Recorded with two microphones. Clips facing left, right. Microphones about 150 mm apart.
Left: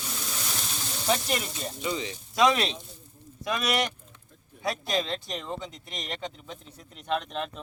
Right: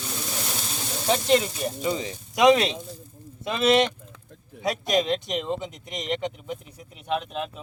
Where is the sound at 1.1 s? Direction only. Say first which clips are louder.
Right 7 dB; 20° right (ahead or behind).